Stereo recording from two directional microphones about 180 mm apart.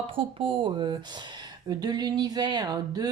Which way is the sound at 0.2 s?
30° right (ahead or behind).